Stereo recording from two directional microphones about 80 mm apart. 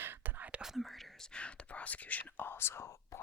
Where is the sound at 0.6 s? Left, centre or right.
Centre.